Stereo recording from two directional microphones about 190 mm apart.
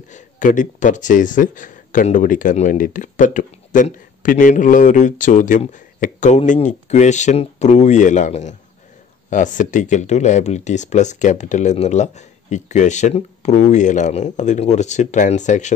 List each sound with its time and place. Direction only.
0.1 s speech: 45° left (ahead or behind)